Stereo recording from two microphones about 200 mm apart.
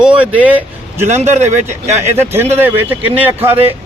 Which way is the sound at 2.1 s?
10° right (ahead or behind).